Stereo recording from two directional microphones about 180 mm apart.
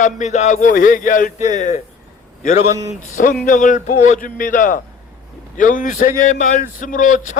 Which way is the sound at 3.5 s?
45° left (ahead or behind).